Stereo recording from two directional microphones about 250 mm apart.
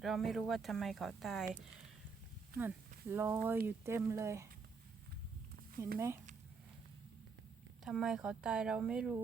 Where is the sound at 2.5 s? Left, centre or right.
Right.